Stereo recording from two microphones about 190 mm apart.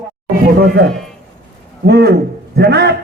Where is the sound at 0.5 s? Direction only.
55° right (ahead or behind).